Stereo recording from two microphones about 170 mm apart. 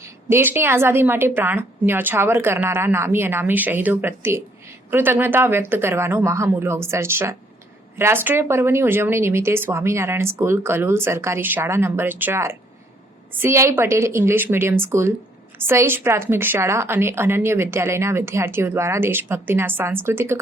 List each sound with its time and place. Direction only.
0.0 s a woman's voice: 15° right (ahead or behind)